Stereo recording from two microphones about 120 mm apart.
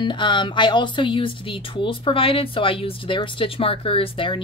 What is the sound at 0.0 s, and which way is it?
Speech, 40° left (ahead or behind).